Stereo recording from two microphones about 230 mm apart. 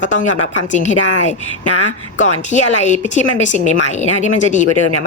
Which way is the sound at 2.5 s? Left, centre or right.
Left.